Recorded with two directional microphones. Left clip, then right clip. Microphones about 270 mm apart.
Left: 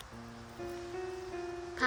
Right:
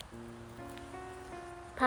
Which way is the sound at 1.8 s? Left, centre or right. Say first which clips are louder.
Right 2 dB; centre.